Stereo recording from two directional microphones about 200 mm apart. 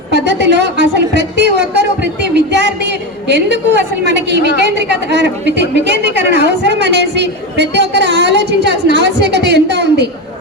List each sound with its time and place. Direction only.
0.1 s a woman's voice: 60° right (ahead or behind)